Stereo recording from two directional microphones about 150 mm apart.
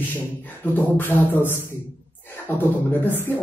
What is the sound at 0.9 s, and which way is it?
A man's voice, 15° left (ahead or behind).